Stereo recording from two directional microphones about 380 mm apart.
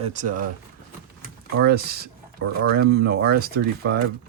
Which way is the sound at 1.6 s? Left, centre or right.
Right.